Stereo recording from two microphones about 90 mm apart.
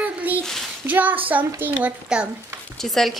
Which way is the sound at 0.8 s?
20° right (ahead or behind).